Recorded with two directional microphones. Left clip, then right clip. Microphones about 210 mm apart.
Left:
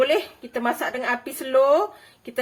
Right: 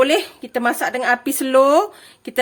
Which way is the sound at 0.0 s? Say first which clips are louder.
Right 4 dB; 55° right (ahead or behind).